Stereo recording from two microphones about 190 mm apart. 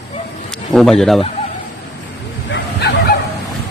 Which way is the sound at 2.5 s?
65° left (ahead or behind).